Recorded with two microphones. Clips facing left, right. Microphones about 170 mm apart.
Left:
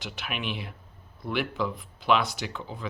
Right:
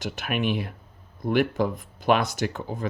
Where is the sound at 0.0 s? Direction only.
45° right (ahead or behind).